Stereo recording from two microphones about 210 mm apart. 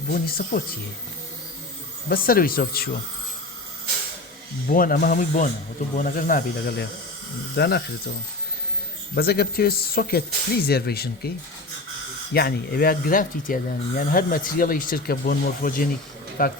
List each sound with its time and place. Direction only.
0.1 s speech: 45° left (ahead or behind)
2.0 s speech: 45° left (ahead or behind)
4.7 s speech: 40° left (ahead or behind)
9.1 s speech: 50° left (ahead or behind)
12.3 s speech: 45° left (ahead or behind)